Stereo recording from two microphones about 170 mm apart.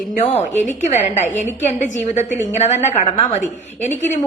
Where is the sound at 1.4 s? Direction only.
10° right (ahead or behind).